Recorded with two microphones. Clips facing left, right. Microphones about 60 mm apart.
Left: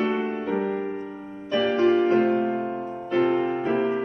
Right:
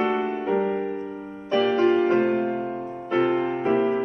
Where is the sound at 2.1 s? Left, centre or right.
Right.